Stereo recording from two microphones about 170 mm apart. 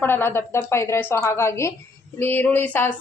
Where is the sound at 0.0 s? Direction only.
10° left (ahead or behind).